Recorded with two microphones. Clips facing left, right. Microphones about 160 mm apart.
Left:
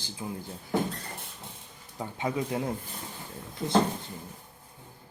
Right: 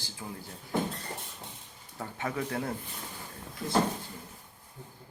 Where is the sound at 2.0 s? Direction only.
15° left (ahead or behind).